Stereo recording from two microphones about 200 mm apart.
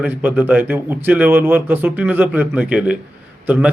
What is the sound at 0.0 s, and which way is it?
A man's voice, 10° right (ahead or behind).